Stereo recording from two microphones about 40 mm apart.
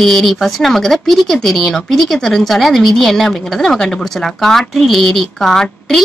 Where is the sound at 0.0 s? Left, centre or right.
Centre.